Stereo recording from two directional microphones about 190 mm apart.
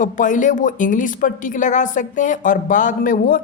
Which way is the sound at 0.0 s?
40° left (ahead or behind).